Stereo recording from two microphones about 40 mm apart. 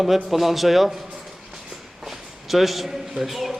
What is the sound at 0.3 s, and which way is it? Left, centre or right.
Speech, centre.